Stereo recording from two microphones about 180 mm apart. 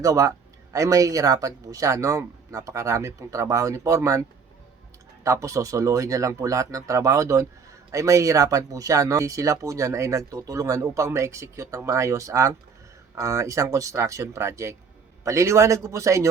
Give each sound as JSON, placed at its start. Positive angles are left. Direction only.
{"t": 0.0, "sound": "speech", "side_deg": -20}
{"t": 5.2, "sound": "speech", "side_deg": -15}